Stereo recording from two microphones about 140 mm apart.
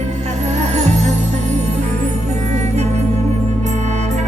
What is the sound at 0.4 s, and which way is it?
Music, 55° right (ahead or behind).